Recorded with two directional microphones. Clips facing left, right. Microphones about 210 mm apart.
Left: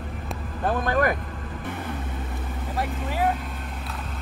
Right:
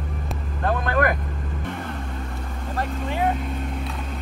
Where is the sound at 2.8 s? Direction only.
5° left (ahead or behind).